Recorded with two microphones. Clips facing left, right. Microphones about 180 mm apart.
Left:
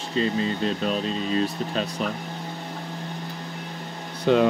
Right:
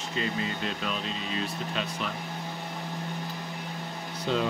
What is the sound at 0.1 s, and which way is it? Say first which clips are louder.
Speech: left 8 dB; 35° left (ahead or behind).